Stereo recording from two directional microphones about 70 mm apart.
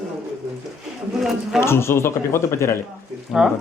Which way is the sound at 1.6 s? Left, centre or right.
Left.